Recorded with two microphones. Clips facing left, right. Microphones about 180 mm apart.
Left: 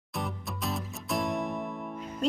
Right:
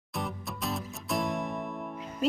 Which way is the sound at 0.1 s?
Centre (ahead or behind).